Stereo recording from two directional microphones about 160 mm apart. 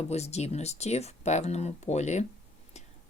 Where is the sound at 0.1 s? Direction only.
40° left (ahead or behind).